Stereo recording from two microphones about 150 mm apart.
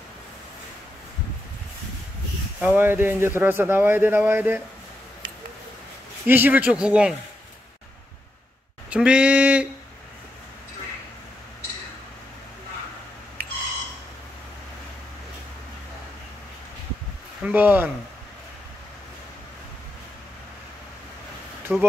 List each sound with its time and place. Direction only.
2.6 s a man's voice: 10° right (ahead or behind)
6.2 s a man's voice: 10° right (ahead or behind)
8.9 s a man's voice: 10° right (ahead or behind)
17.4 s speech: 10° right (ahead or behind)
21.7 s speech: centre (ahead or behind)